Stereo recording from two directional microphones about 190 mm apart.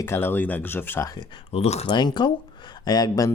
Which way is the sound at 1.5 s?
35° left (ahead or behind).